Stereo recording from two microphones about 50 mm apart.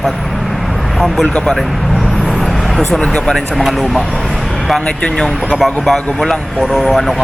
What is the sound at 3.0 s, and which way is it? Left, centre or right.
Speech, centre.